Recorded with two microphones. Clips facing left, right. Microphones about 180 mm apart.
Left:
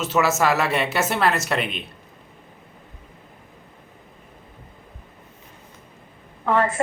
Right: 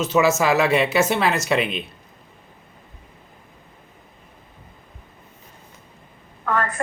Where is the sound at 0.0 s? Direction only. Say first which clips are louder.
Right 2 dB; centre (ahead or behind).